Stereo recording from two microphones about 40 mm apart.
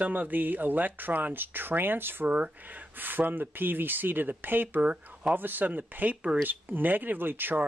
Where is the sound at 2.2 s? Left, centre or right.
Right.